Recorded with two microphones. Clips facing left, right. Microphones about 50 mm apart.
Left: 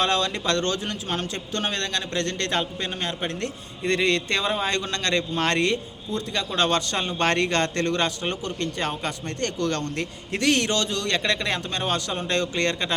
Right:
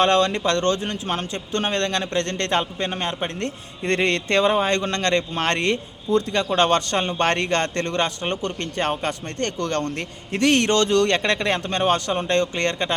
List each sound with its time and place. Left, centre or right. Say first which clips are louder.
0.0 s a man's voice: right 5 dB; right
3.8 s a man's voice: right 1 dB; right
8.4 s speech: right 2 dB; right
11.2 s a man's voice: right 3 dB; right